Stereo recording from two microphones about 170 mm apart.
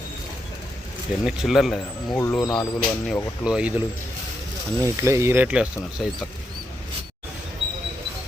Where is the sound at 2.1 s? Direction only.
15° left (ahead or behind).